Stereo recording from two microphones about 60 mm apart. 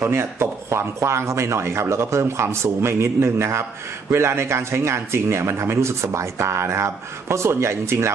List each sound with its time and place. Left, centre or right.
0.0 s speech: right